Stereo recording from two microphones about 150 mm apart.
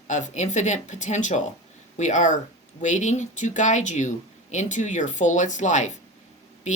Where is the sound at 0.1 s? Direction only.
55° left (ahead or behind).